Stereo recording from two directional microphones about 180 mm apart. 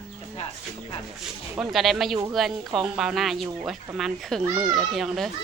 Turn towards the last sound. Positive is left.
turn(degrees=0)  # may be behind; listen again after turning